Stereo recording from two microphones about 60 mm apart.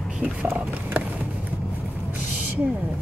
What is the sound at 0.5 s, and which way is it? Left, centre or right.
Speech, right.